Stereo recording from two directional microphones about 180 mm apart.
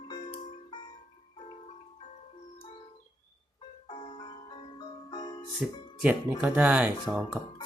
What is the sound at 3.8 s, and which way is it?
Music, 25° left (ahead or behind).